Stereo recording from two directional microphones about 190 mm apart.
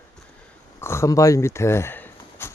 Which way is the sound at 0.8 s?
15° left (ahead or behind).